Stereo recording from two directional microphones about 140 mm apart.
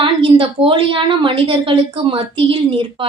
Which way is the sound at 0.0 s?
40° right (ahead or behind).